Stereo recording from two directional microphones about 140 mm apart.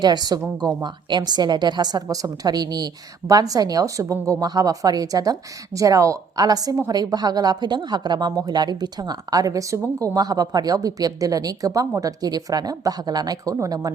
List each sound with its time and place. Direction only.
0.0 s a woman's voice: 30° right (ahead or behind)